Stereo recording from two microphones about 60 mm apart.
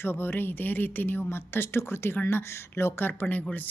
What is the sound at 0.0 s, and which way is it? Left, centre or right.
Speech, left.